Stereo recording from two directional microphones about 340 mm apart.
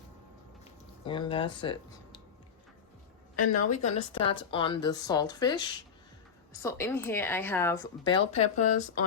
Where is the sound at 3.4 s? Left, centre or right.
Left.